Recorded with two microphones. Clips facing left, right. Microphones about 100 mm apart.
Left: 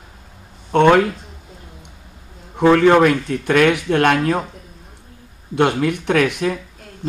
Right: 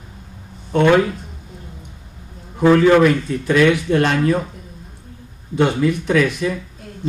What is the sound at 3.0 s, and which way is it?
Speech, 60° left (ahead or behind).